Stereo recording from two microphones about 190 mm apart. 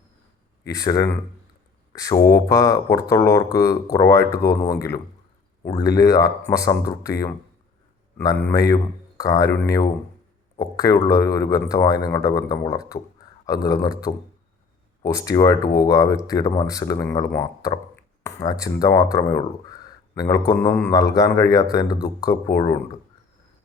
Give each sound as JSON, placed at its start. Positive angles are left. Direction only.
{"t": 0.7, "sound": "speech", "side_deg": 20}
{"t": 8.2, "sound": "speech", "side_deg": 20}
{"t": 10.6, "sound": "speech", "side_deg": 15}